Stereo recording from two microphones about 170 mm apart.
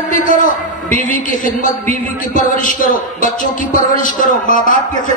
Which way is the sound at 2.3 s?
50° left (ahead or behind).